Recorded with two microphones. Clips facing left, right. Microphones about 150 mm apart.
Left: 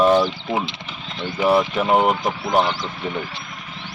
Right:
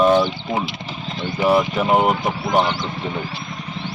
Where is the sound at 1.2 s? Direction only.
Centre (ahead or behind).